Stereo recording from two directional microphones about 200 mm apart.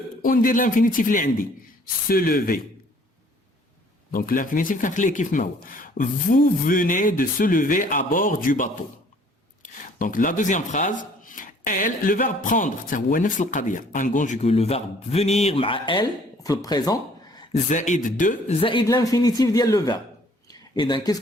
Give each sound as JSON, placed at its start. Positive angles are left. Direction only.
{"t": 0.2, "sound": "speech", "side_deg": 45}
{"t": 4.1, "sound": "speech", "side_deg": 45}
{"t": 17.5, "sound": "speech", "side_deg": 35}
{"t": 18.6, "sound": "speech", "side_deg": 25}
{"t": 20.5, "sound": "a sound", "side_deg": 20}